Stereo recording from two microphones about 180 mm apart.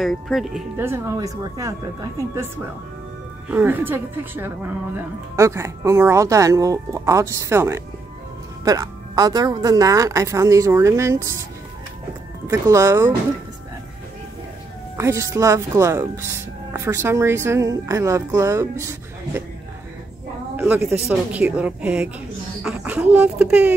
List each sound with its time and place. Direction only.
0.0 s speech: centre (ahead or behind)
0.7 s speech: 15° right (ahead or behind)
3.4 s speech: 10° right (ahead or behind)
12.4 s speech: 15° right (ahead or behind)
15.0 s speech: 15° right (ahead or behind)
20.5 s speech: 10° right (ahead or behind)